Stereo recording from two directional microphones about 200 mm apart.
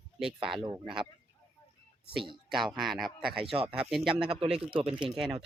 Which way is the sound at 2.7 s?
Centre (ahead or behind).